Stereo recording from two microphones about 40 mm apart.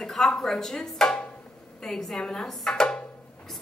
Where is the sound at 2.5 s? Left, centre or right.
Centre.